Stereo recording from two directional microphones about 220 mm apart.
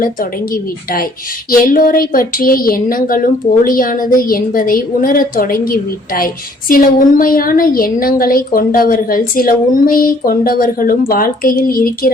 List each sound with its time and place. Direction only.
0.0 s a woman's voice: 40° left (ahead or behind)